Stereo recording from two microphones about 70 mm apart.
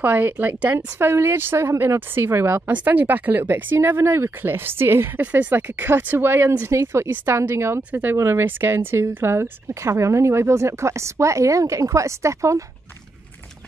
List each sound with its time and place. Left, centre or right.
0.0 s speech: right
0.7 s speech: right
5.2 s speech: right
7.9 s speech: right